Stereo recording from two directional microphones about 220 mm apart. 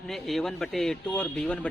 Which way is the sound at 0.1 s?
Centre (ahead or behind).